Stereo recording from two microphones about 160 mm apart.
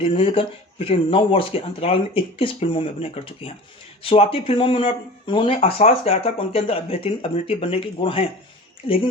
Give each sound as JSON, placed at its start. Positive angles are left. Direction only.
{"t": 0.0, "sound": "speech", "side_deg": 35}